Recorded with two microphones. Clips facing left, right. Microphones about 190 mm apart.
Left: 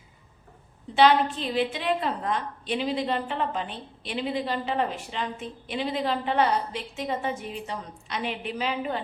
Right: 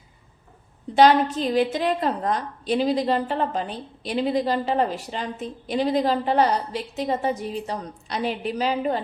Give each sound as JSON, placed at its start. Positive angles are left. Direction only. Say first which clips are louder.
{"t": 0.9, "sound": "a woman's voice", "louder": "right 4 dB", "side_deg": -40}